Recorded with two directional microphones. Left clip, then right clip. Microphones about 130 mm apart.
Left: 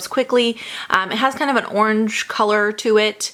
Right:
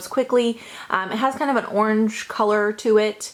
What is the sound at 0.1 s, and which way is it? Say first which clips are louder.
A woman's voice: left 2 dB; 30° left (ahead or behind).